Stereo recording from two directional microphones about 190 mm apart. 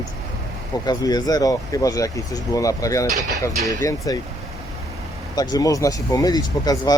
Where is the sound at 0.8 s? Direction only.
20° left (ahead or behind).